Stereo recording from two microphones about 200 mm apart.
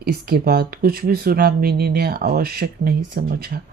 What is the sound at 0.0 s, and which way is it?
Speech, 50° right (ahead or behind).